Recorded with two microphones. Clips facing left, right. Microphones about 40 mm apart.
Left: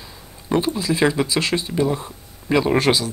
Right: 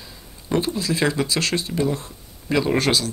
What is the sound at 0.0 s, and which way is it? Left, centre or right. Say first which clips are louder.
Speech: left 2 dB; centre.